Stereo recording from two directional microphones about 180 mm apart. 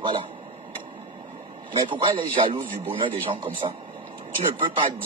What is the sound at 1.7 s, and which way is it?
Speech, 30° right (ahead or behind).